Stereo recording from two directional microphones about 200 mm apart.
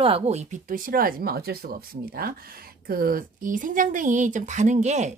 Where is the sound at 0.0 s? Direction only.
30° right (ahead or behind).